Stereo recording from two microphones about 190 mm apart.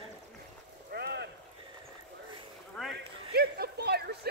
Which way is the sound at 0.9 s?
60° right (ahead or behind).